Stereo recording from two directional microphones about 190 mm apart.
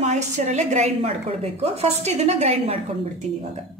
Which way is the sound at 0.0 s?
35° right (ahead or behind).